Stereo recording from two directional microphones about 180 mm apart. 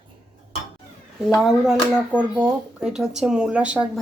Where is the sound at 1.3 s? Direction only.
Centre (ahead or behind).